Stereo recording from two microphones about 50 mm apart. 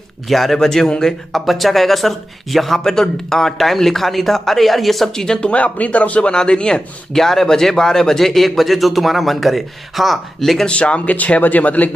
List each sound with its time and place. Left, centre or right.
0.3 s a man's voice: centre
1.3 s speech: centre
5.5 s a man's voice: left; by 10.7 s centre
10.7 s speech: left